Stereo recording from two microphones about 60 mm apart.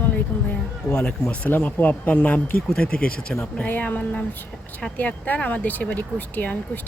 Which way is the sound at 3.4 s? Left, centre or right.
Left.